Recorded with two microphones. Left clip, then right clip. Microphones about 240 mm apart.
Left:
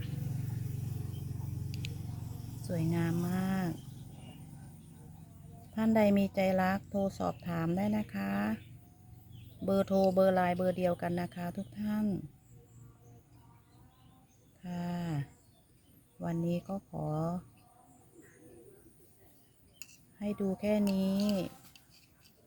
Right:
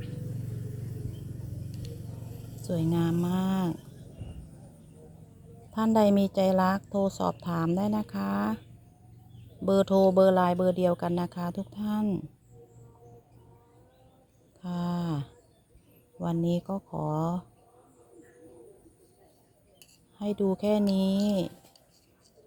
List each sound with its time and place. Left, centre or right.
2.6 s speech: right
5.7 s a woman's voice: right
9.6 s a woman's voice: centre
14.6 s a sound: right
16.5 s a woman's voice: right
20.1 s a woman's voice: right